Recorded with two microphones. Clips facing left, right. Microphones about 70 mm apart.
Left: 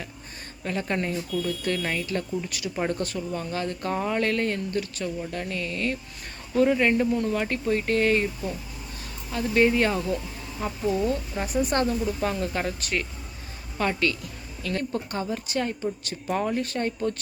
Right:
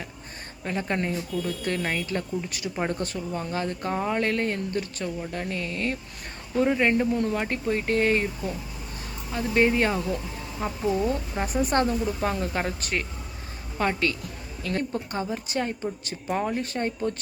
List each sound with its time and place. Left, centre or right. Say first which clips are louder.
0.6 s speech: even; right
6.6 s speech: left 1 dB; centre
14.9 s speech: even; right